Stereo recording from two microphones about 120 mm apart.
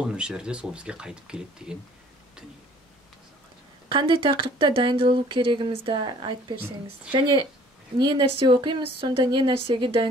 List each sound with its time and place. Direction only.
0.0 s speech: 10° right (ahead or behind)
3.9 s speech: 45° right (ahead or behind)